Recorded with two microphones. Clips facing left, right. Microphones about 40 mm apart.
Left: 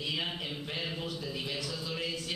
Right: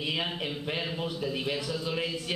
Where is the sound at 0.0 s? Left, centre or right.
Right.